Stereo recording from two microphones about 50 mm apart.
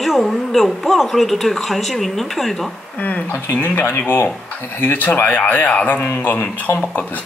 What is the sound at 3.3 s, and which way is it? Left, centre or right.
Speech, left.